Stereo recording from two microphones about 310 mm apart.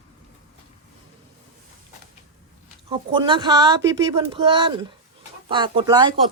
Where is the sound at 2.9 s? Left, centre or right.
Centre.